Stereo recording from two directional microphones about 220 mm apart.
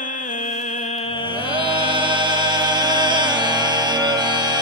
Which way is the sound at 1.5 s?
20° right (ahead or behind).